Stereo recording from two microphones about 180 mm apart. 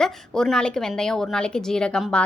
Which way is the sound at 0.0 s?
5° left (ahead or behind).